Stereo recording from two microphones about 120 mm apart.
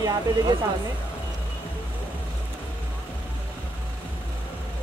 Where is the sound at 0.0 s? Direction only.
30° right (ahead or behind).